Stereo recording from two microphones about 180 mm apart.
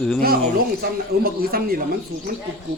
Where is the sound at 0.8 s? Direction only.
55° right (ahead or behind).